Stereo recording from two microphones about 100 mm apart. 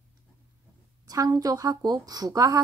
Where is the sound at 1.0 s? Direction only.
35° right (ahead or behind).